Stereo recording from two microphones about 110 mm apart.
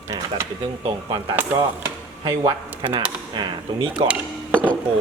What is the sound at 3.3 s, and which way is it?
Speech, 45° right (ahead or behind).